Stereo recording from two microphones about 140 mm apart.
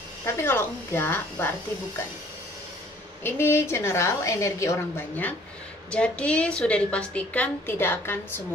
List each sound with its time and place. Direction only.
0.2 s a woman's voice: 15° left (ahead or behind)
3.3 s a woman's voice: 15° left (ahead or behind)